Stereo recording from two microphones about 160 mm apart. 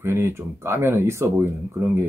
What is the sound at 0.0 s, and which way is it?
Speech, 15° right (ahead or behind).